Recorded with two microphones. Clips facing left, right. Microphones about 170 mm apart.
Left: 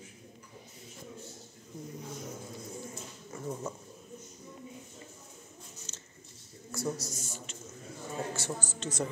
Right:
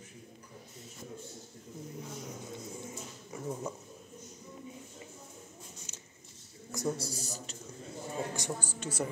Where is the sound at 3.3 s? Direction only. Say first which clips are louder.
Even; 15° right (ahead or behind).